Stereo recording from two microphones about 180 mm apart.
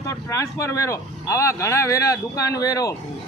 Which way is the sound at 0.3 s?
15° left (ahead or behind).